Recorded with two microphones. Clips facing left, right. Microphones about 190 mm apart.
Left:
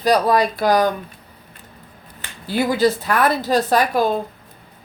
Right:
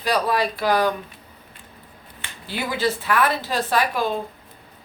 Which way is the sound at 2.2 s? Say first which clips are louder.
Left 8 dB; 40° left (ahead or behind).